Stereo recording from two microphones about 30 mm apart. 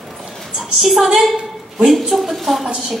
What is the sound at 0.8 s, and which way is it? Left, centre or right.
Speech, centre.